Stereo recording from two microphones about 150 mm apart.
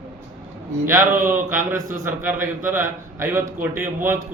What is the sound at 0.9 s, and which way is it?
A man's voice, 15° right (ahead or behind).